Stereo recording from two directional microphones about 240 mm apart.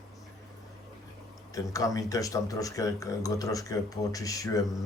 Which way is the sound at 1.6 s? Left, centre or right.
Centre.